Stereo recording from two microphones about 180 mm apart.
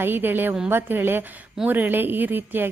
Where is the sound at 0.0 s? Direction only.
10° right (ahead or behind).